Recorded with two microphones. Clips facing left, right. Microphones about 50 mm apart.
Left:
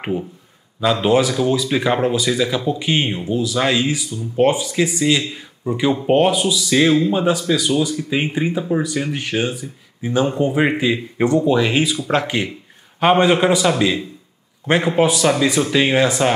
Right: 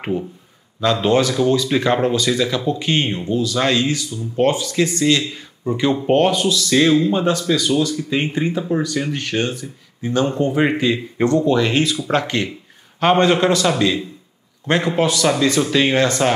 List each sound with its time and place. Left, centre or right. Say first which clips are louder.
0.0 s speech: even; centre